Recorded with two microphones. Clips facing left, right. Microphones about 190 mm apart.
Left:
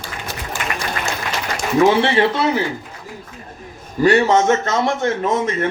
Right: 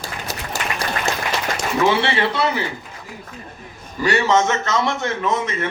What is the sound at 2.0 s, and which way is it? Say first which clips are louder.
Speech: left 4 dB; 45° left (ahead or behind).